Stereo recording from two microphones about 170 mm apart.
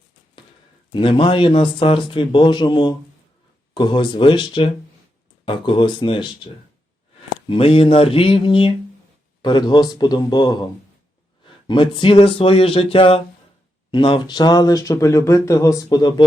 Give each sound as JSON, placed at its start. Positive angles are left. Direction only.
{"t": 0.9, "sound": "speech", "side_deg": 30}
{"t": 7.5, "sound": "speech", "side_deg": 35}
{"t": 11.7, "sound": "speech", "side_deg": 30}